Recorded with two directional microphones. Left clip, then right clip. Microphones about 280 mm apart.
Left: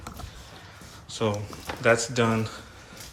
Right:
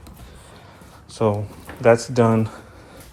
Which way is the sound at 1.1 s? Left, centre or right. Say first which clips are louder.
Right 7 dB; centre.